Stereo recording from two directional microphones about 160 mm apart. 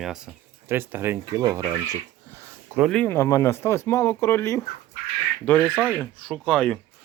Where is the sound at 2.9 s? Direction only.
10° left (ahead or behind).